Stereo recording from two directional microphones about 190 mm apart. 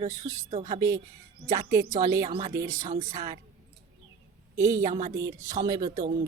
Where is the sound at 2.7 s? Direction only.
40° right (ahead or behind).